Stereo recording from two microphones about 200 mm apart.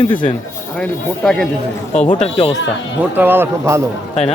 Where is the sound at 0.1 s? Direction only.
25° left (ahead or behind).